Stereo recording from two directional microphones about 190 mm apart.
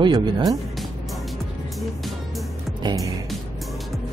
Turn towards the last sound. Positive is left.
turn(degrees=-20)  # may be behind; listen again after turning